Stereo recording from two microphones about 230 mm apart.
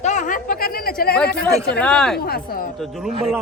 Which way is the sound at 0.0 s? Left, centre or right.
Left.